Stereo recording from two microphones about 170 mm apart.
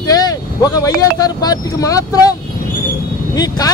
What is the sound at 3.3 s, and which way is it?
Speech, 20° left (ahead or behind).